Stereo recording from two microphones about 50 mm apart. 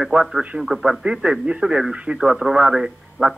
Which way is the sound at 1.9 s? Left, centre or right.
Right.